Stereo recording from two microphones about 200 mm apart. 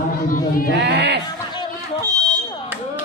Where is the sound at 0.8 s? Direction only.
55° right (ahead or behind).